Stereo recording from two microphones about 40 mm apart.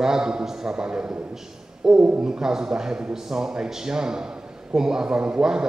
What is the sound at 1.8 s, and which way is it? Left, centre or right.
A man's voice, centre.